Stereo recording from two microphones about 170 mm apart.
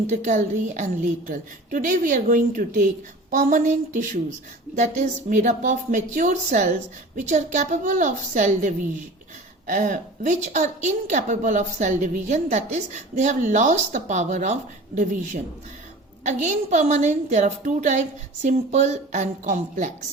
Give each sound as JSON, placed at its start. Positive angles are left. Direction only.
{"t": 0.1, "sound": "a woman's voice", "side_deg": -45}
{"t": 16.2, "sound": "a woman's voice", "side_deg": -45}